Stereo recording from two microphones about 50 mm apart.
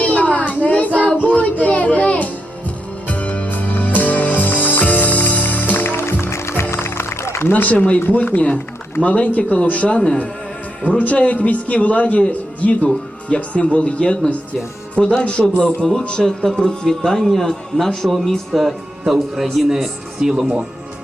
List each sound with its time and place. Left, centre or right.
0.0 s a sound: left
1.2 s music: left
6.2 s music: left
7.5 s a man's voice: left
9.9 s a man's voice: centre
10.8 s a man's voice: left; by 20.4 s centre